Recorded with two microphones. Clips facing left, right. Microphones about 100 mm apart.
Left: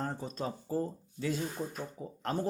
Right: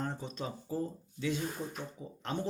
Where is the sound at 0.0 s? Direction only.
40° left (ahead or behind).